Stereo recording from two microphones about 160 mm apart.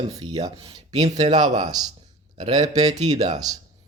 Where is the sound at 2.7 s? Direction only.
45° right (ahead or behind).